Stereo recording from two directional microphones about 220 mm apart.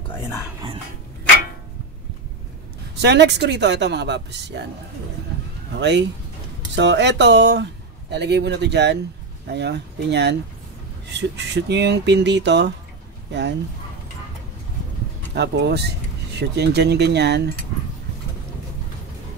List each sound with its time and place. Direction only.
3.0 s speech: 50° right (ahead or behind)
5.7 s speech: 50° right (ahead or behind)
15.3 s speech: 50° right (ahead or behind)